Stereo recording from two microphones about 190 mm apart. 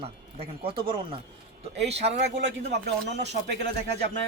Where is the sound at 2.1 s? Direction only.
65° right (ahead or behind).